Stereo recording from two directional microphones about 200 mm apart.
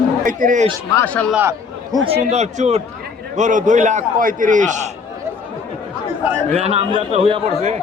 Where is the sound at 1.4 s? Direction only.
15° right (ahead or behind).